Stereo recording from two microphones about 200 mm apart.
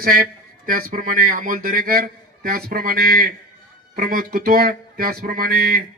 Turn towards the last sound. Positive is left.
turn(degrees=-45)  # may be behind; listen again after turning